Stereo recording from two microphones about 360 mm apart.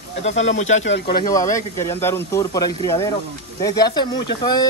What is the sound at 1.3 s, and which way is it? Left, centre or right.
Speech, centre.